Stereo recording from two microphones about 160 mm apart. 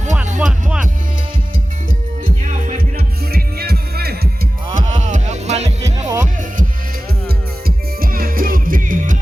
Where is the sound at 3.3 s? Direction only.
75° right (ahead or behind).